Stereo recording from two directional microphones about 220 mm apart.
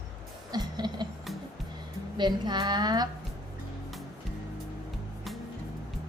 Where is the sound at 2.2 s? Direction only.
20° right (ahead or behind).